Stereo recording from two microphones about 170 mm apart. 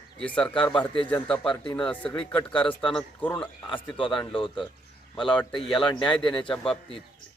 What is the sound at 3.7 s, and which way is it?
Speech, 30° left (ahead or behind).